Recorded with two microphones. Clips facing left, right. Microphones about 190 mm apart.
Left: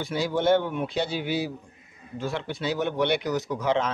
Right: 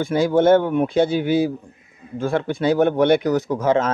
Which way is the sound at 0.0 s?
50° right (ahead or behind).